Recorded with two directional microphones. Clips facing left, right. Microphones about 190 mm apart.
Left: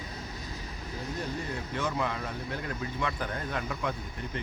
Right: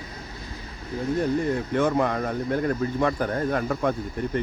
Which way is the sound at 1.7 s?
55° right (ahead or behind).